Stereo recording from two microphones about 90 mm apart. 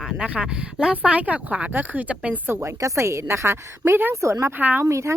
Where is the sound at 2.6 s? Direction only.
35° right (ahead or behind).